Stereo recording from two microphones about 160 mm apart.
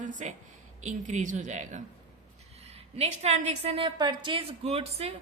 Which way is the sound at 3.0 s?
45° right (ahead or behind).